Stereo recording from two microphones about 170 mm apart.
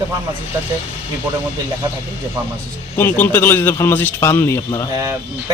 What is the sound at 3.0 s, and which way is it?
A man's voice, 10° left (ahead or behind).